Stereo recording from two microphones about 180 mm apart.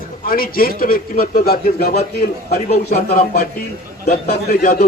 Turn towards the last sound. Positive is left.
turn(degrees=55)  # may be behind; listen again after turning